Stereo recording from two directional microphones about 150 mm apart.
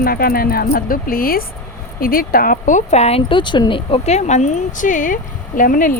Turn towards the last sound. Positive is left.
turn(degrees=65)  # may be behind; listen again after turning